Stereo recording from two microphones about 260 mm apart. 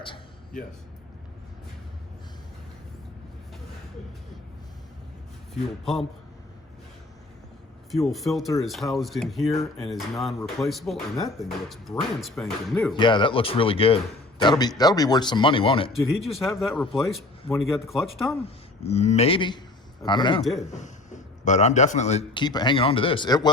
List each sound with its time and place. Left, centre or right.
5.8 s speech: centre
7.9 s speech: centre
12.9 s a man's voice: centre
16.3 s speech: centre
18.8 s a man's voice: left
20.4 s speech: centre
20.7 s speech: left